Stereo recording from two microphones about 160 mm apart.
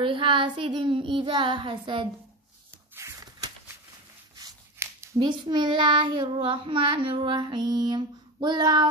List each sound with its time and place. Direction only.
0.0 s child singing: 30° right (ahead or behind)
4.4 s a sound: 20° right (ahead or behind)
5.3 s child singing: 30° right (ahead or behind)